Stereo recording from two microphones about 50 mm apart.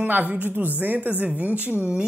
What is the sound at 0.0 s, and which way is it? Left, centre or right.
A woman's voice, right.